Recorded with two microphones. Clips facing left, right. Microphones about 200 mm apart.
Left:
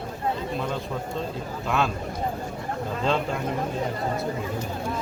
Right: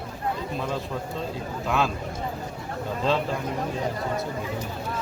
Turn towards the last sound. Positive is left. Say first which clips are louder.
# even
turn(degrees=0)  # may be behind; listen again after turning